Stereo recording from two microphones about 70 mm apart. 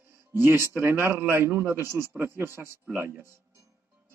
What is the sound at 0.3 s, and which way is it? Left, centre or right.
A man's voice, right.